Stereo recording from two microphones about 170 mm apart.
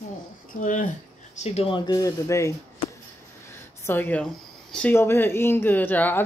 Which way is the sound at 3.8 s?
15° left (ahead or behind).